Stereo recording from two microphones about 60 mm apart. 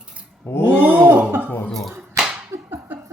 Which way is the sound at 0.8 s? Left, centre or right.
Right.